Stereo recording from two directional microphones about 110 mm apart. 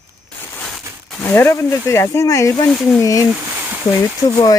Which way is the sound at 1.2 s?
20° left (ahead or behind).